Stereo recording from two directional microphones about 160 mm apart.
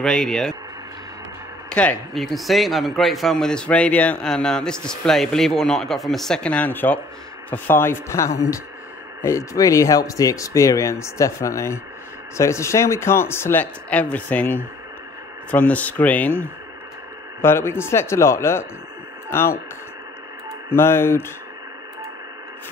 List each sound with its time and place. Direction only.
0.0 s a man's voice: centre (ahead or behind)
1.7 s a man's voice: 5° left (ahead or behind)
20.7 s speech: 15° left (ahead or behind)